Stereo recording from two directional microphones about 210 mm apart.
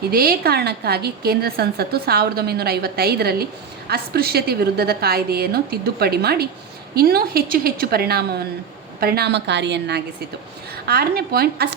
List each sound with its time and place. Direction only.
0.1 s a woman's voice: 45° right (ahead or behind)